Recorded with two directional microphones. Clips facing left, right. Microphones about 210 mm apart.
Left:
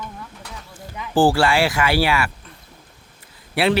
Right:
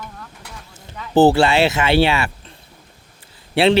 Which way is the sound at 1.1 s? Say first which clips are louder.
Right 4 dB; 20° right (ahead or behind).